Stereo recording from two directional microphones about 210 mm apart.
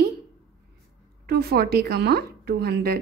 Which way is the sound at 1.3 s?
50° right (ahead or behind).